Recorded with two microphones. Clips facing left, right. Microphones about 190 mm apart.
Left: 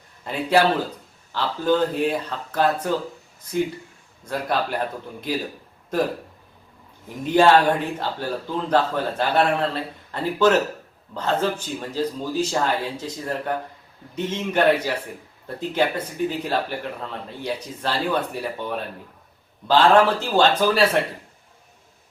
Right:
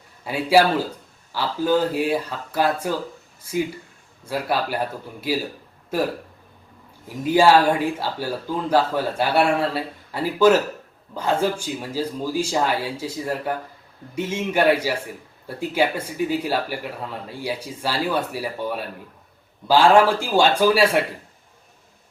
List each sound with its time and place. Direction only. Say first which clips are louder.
1.3 s speech: right 1 dB; 10° right (ahead or behind)
7.3 s speech: even; 10° right (ahead or behind)